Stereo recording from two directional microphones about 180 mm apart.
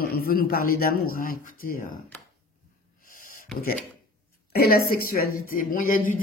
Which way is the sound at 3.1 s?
50° left (ahead or behind).